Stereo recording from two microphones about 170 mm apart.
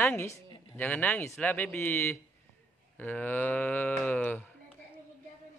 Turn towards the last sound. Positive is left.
turn(degrees=10)  # may be behind; listen again after turning